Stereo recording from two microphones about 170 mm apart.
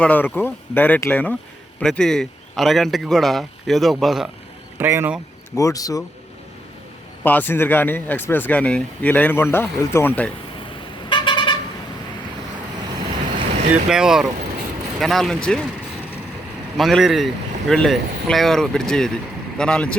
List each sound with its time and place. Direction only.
0.0 s speech: 10° left (ahead or behind)
4.8 s speech: 10° right (ahead or behind)
5.5 s speech: 20° left (ahead or behind)
7.3 s speech: 10° left (ahead or behind)
11.1 s vehicle: 30° left (ahead or behind)
13.1 s boat: 30° right (ahead or behind)
13.9 s speech: 5° right (ahead or behind)
16.7 s speech: centre (ahead or behind)